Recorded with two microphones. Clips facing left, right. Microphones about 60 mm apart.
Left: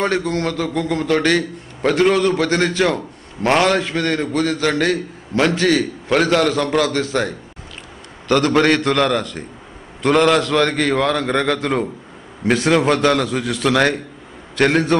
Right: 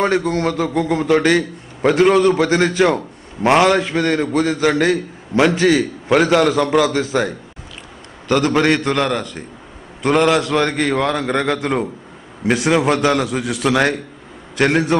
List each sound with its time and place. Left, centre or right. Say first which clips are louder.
0.0 s a man's voice: right 2 dB; centre
2.1 s a man's voice: right 3 dB; right; by 15.0 s centre